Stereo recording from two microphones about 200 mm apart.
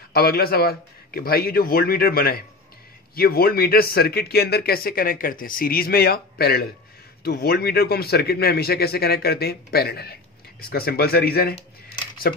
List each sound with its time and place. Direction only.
0.1 s speech: 50° left (ahead or behind)